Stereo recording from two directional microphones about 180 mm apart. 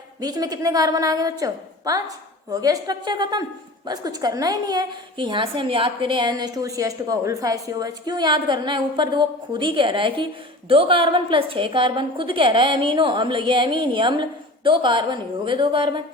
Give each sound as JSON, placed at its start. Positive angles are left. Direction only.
{"t": 0.2, "sound": "a woman's voice", "side_deg": -20}